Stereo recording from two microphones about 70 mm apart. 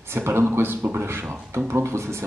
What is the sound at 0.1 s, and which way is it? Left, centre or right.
Speech, right.